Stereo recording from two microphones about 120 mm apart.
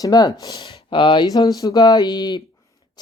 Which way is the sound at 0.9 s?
45° left (ahead or behind).